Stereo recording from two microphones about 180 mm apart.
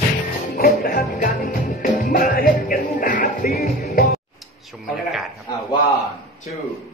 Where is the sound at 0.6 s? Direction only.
55° left (ahead or behind).